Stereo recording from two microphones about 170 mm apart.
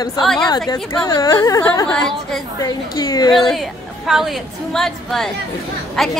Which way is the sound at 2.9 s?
20° left (ahead or behind).